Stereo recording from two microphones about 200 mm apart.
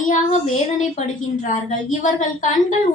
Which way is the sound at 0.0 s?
40° left (ahead or behind).